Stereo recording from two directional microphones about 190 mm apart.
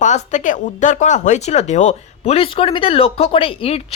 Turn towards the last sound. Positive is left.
turn(degrees=30)  # may be behind; listen again after turning